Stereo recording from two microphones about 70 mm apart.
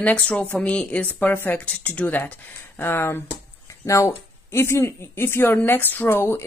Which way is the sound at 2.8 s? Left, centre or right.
Left.